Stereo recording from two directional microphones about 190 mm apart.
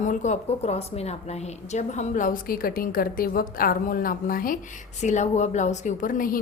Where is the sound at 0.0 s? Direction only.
40° left (ahead or behind).